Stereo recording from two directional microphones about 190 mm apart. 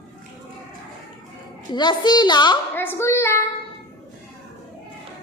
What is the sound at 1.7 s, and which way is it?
Speech, 25° left (ahead or behind).